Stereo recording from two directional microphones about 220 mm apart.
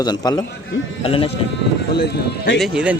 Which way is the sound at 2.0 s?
50° left (ahead or behind).